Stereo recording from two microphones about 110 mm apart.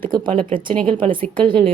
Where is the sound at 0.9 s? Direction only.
50° right (ahead or behind).